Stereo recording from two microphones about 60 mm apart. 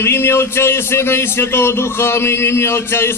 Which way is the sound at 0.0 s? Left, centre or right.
Left.